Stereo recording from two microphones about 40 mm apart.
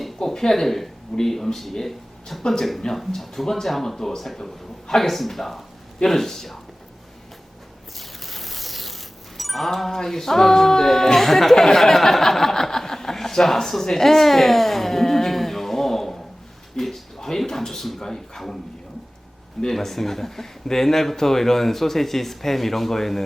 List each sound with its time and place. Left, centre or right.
0.3 s a man's voice: centre
7.9 s a sound: centre
9.4 s music: centre
16.7 s speech: centre
19.6 s a man's voice: centre